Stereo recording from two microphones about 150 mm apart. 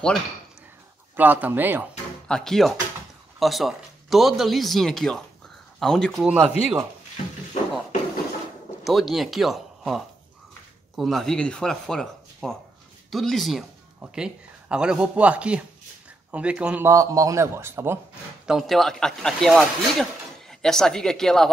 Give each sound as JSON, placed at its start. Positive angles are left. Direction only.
{"t": 1.1, "sound": "speech", "side_deg": -10}
{"t": 2.2, "sound": "speech", "side_deg": 5}
{"t": 6.3, "sound": "speech", "side_deg": -10}
{"t": 8.8, "sound": "speech", "side_deg": 0}
{"t": 18.5, "sound": "speech", "side_deg": 0}